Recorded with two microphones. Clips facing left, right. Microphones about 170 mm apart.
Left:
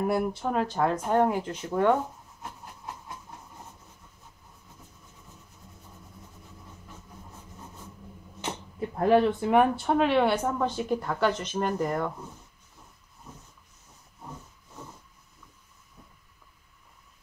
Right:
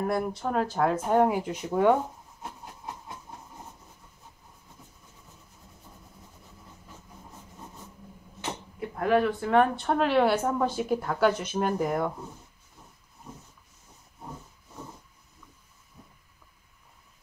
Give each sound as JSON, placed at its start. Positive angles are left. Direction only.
{"t": 0.0, "sound": "speech", "side_deg": 5}
{"t": 8.7, "sound": "a sound", "side_deg": 30}
{"t": 9.4, "sound": "speech", "side_deg": 15}